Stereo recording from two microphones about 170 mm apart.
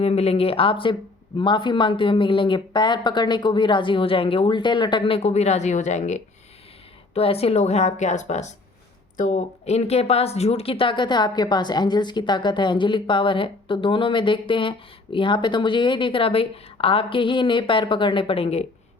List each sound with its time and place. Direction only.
0.0 s a woman's voice: 40° left (ahead or behind)